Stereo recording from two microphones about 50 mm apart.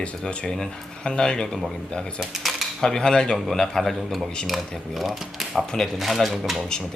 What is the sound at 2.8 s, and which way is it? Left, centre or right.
Speech, centre.